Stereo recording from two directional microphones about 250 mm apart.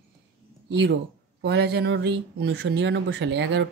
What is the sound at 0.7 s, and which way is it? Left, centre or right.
Speech, right.